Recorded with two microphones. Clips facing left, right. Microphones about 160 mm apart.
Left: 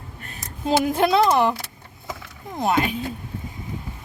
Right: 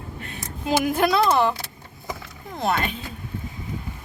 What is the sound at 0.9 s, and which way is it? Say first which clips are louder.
Speech: left 1 dB; 25° left (ahead or behind).